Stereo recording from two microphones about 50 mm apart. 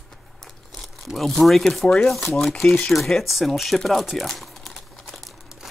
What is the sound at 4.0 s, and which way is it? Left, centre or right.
Crumpling, centre.